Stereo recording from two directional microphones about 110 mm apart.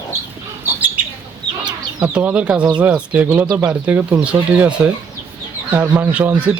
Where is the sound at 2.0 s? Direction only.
10° right (ahead or behind).